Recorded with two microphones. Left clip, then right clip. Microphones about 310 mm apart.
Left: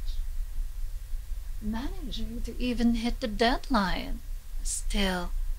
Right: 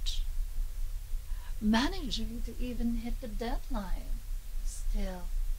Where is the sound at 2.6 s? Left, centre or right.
Left.